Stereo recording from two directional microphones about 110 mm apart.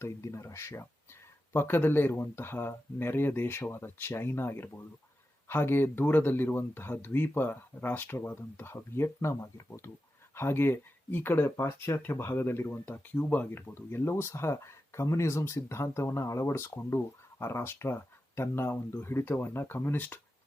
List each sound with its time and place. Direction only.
0.0 s speech: 25° left (ahead or behind)